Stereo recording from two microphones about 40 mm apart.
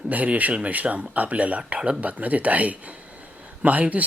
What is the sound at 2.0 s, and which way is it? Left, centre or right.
Speech, right.